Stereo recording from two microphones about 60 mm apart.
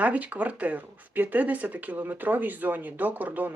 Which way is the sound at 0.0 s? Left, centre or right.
Right.